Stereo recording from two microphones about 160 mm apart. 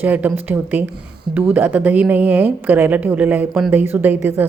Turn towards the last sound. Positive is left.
turn(degrees=-15)  # may be behind; listen again after turning